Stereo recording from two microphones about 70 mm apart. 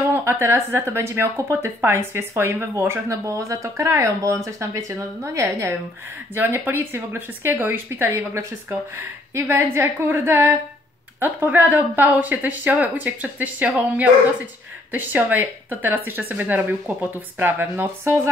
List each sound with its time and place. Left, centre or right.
0.1 s a woman's voice: right
6.3 s a woman's voice: right